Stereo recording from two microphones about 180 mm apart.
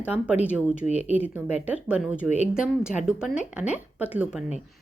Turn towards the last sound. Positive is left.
turn(degrees=-10)  # may be behind; listen again after turning